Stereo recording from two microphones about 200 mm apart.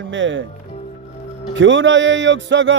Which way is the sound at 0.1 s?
70° right (ahead or behind).